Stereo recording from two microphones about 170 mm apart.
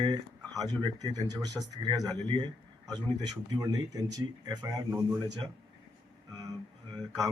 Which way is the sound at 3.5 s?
20° right (ahead or behind).